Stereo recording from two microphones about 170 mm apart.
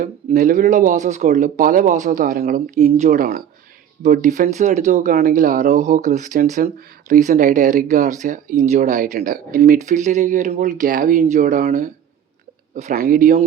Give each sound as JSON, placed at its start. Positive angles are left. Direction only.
{"t": 0.0, "sound": "speech", "side_deg": -50}